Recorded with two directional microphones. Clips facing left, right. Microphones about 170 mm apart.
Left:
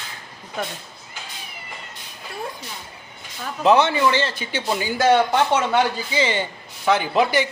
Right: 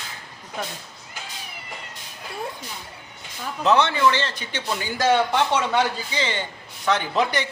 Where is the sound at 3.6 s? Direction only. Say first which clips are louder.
Left 2 dB; 15° left (ahead or behind).